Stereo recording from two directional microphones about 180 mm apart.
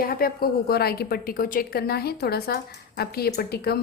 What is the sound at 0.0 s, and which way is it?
A woman's voice, 55° left (ahead or behind).